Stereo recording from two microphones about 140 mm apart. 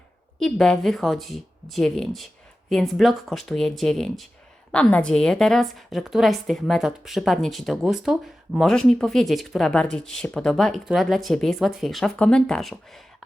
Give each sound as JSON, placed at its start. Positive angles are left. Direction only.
{"t": 0.3, "sound": "a woman's voice", "side_deg": 5}